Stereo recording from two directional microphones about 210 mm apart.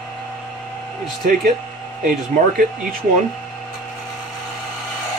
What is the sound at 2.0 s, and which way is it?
Speech, 40° right (ahead or behind).